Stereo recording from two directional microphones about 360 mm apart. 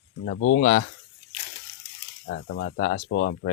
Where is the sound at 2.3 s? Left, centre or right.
Left.